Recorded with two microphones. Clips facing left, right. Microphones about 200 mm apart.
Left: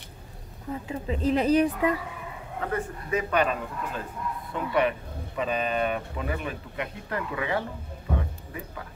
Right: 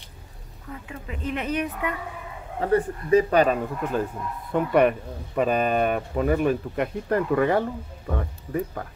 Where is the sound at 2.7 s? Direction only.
35° right (ahead or behind).